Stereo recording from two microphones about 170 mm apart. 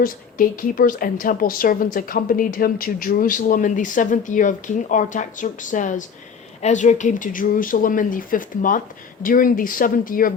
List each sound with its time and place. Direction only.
0.0 s a woman's voice: 55° left (ahead or behind)